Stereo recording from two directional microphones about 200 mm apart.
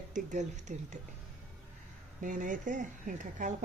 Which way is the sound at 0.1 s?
40° right (ahead or behind).